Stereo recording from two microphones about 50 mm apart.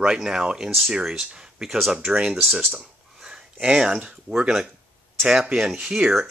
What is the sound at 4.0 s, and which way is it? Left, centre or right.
Speech, right.